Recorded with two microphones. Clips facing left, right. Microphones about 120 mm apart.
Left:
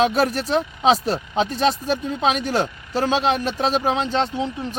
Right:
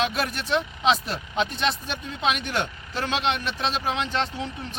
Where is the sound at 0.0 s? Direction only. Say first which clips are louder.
Left 8 dB; 35° left (ahead or behind).